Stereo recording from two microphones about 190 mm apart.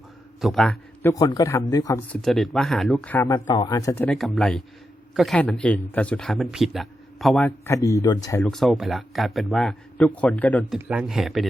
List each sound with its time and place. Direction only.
0.4 s speech: centre (ahead or behind)
1.0 s speech: 20° left (ahead or behind)
2.0 s speech: centre (ahead or behind); by 8.4 s 15° left (ahead or behind)
8.4 s speech: centre (ahead or behind)
10.8 s speech: 5° right (ahead or behind)